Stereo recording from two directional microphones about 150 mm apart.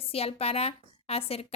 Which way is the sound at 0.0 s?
40° left (ahead or behind).